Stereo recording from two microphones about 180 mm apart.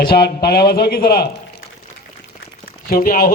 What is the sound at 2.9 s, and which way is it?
Speech, 55° left (ahead or behind).